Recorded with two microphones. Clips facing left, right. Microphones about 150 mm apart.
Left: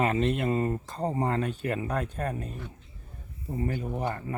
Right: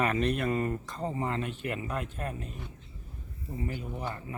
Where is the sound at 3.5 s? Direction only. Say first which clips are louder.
Left 5 dB; 50° left (ahead or behind).